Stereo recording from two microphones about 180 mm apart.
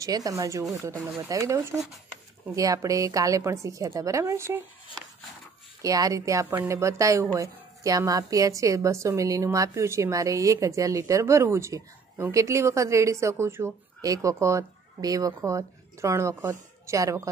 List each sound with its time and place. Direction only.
0.0 s a woman's voice: 20° right (ahead or behind)
5.8 s a woman's voice: 20° right (ahead or behind)